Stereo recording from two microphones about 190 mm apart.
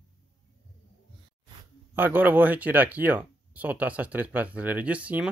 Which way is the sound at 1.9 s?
10° right (ahead or behind).